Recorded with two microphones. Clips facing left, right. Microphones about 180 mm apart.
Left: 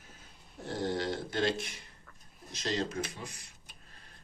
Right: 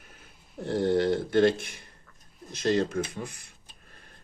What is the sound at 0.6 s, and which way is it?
Speech, 60° right (ahead or behind).